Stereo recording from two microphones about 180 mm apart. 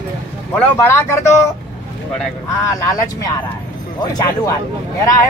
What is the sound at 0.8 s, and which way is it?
Speech, 15° left (ahead or behind).